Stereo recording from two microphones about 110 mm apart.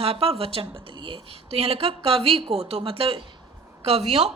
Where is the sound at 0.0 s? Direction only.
60° right (ahead or behind).